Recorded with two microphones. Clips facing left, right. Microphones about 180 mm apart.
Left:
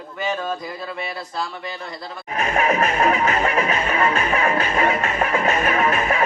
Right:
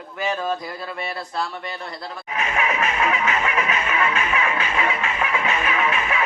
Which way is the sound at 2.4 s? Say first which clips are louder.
Left 4 dB; 40° left (ahead or behind).